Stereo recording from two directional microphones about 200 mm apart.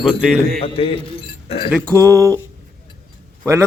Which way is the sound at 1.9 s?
15° right (ahead or behind).